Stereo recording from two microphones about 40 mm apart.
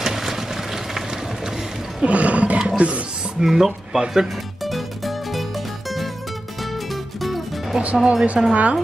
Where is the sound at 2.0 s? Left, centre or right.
Right.